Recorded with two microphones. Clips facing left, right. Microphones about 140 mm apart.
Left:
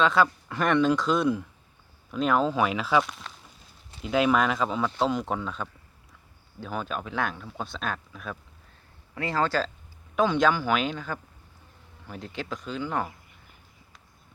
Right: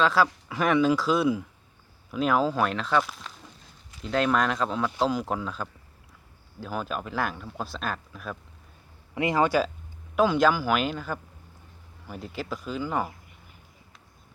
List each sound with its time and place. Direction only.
0.0 s speech: centre (ahead or behind)
9.1 s speech: 15° right (ahead or behind)